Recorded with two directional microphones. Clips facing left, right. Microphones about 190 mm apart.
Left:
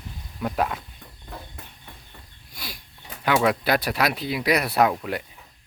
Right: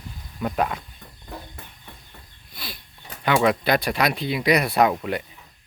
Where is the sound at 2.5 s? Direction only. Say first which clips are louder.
Right 1 dB; 10° left (ahead or behind).